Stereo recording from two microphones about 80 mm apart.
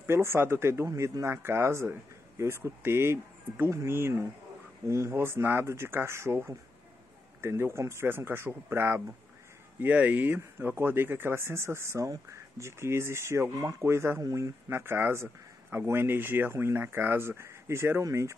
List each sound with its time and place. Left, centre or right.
0.0 s speech: right